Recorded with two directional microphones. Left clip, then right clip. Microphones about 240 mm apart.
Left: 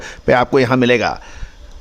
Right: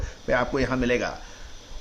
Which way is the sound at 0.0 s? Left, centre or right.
Left.